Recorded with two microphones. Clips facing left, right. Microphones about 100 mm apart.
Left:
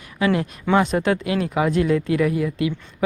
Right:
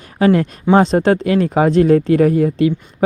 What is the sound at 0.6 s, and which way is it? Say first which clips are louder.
Speech: right 6 dB; 30° right (ahead or behind).